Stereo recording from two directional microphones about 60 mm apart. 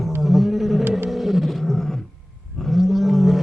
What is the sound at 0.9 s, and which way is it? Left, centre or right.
Wild animals, right.